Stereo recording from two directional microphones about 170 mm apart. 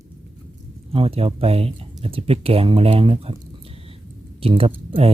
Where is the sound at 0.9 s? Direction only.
35° right (ahead or behind).